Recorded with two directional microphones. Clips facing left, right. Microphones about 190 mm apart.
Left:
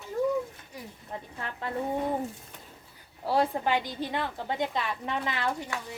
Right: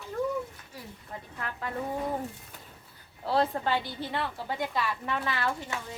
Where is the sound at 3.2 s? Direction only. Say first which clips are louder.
Left 1 dB; 10° left (ahead or behind).